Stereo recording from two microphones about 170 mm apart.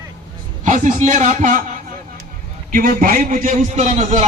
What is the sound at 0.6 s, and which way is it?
A man's voice, 45° right (ahead or behind).